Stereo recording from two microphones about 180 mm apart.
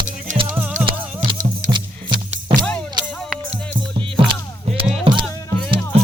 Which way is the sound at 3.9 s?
30° right (ahead or behind).